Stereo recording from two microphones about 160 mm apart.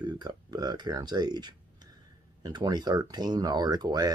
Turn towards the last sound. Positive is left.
turn(degrees=-25)  # may be behind; listen again after turning